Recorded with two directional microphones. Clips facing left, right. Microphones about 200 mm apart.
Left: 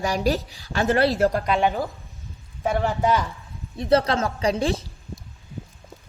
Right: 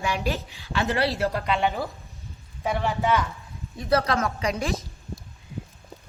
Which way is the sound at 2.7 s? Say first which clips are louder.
Left 2 dB; 45° left (ahead or behind).